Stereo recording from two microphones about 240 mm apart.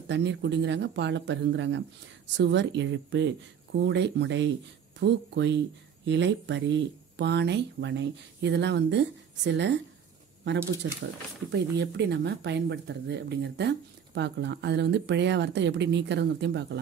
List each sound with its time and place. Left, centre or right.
0.1 s speech: right